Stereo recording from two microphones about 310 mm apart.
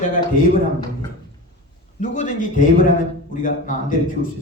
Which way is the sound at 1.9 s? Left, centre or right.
Left.